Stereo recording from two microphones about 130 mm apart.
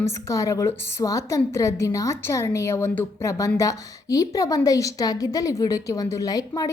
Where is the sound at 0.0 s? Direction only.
25° left (ahead or behind).